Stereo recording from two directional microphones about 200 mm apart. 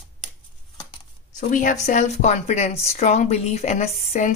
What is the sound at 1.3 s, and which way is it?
Speech, 40° left (ahead or behind).